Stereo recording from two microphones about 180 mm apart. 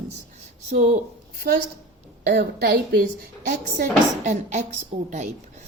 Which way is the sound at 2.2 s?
60° right (ahead or behind).